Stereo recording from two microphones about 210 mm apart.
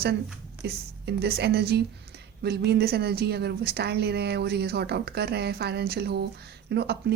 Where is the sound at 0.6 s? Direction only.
50° right (ahead or behind).